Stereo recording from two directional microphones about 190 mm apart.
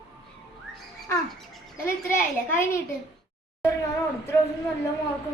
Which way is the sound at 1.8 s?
15° left (ahead or behind).